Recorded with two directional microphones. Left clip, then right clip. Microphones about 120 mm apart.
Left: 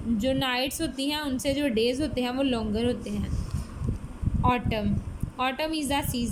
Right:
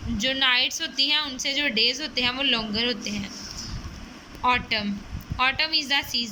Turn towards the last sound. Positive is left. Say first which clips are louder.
# right 5 dB
turn(degrees=45)  # may be behind; listen again after turning